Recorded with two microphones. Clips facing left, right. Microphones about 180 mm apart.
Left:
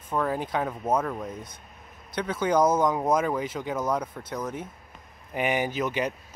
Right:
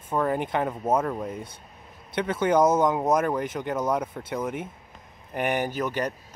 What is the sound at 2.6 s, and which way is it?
Speech, 25° right (ahead or behind).